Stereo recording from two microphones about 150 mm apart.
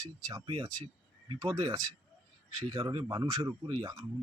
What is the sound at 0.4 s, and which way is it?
Speech, 35° right (ahead or behind).